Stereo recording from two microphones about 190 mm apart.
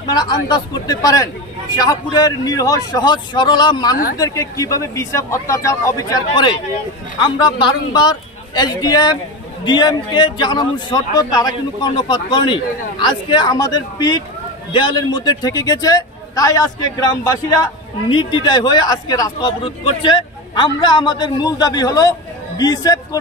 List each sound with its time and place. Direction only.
0.0 s speech: 20° left (ahead or behind)